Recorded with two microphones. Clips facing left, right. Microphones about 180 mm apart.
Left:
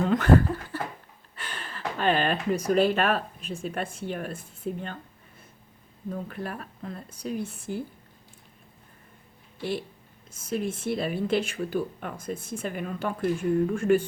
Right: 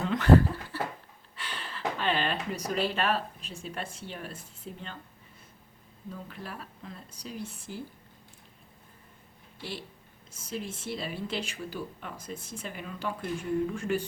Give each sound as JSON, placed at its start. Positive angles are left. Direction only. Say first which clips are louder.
{"t": 0.0, "sound": "a sound", "louder": "left 1 dB", "side_deg": 50}
{"t": 1.4, "sound": "speech", "louder": "even", "side_deg": 50}
{"t": 6.1, "sound": "speech", "louder": "left 7 dB", "side_deg": 55}
{"t": 9.6, "sound": "speech", "louder": "left 9 dB", "side_deg": 55}